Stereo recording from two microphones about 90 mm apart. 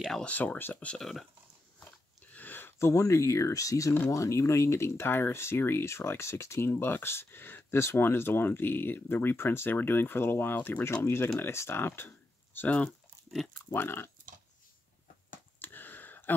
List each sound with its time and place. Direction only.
0.2 s speech: 15° left (ahead or behind)
1.0 s speech: centre (ahead or behind)
1.8 s a sound: 15° left (ahead or behind)
2.9 s speech: 35° left (ahead or behind)
12.5 s speech: 15° left (ahead or behind)
15.6 s a sound: 20° left (ahead or behind)